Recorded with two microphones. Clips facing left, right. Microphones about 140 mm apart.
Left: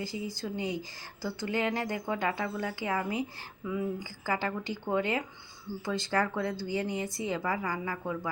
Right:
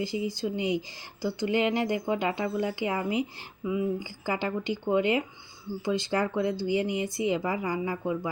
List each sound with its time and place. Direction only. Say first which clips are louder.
0.0 s speech: right 6 dB; 20° right (ahead or behind)